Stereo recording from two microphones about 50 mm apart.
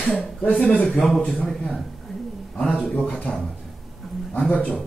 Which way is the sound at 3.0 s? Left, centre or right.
Left.